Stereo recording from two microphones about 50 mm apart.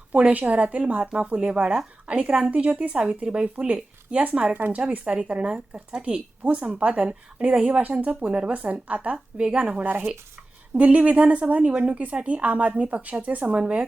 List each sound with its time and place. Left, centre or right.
0.1 s a woman's voice: right
4.8 s a woman's voice: centre